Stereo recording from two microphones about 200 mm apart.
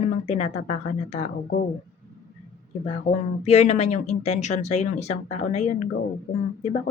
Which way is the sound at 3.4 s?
35° left (ahead or behind).